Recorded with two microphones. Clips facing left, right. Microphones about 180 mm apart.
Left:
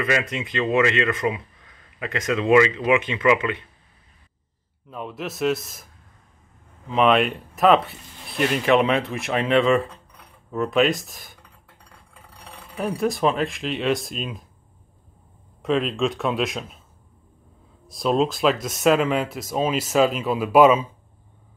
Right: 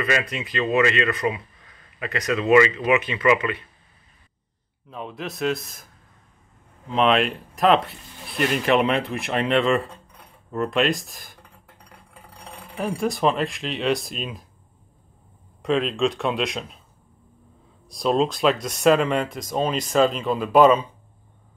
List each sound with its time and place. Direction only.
0.0 s speech: 20° left (ahead or behind)
4.8 s speech: centre (ahead or behind)
6.9 s speech: centre (ahead or behind)
12.7 s speech: centre (ahead or behind)
15.6 s speech: centre (ahead or behind)
17.8 s speech: centre (ahead or behind)